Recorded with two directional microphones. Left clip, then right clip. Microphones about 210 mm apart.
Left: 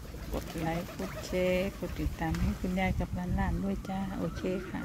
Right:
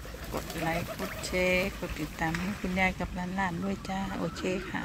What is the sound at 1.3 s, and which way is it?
Speech, 15° left (ahead or behind).